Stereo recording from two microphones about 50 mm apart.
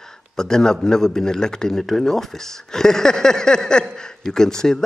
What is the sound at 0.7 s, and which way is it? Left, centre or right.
Speech, centre.